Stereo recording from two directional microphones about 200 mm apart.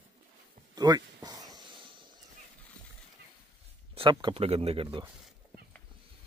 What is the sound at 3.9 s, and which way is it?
Speech, 25° right (ahead or behind).